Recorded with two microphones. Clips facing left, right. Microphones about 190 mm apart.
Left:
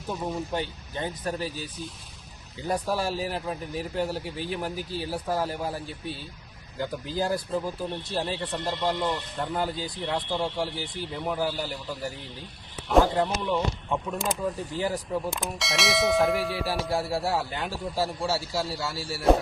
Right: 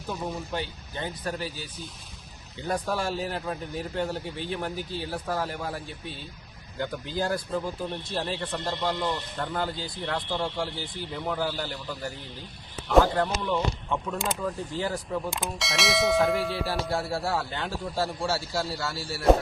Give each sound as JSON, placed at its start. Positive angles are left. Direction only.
{"t": 0.1, "sound": "speech", "side_deg": 20}
{"t": 2.6, "sound": "speech", "side_deg": 10}
{"t": 13.1, "sound": "speech", "side_deg": 15}
{"t": 15.3, "sound": "a man's voice", "side_deg": 0}
{"t": 16.6, "sound": "speech", "side_deg": 15}
{"t": 17.9, "sound": "a man's voice", "side_deg": 5}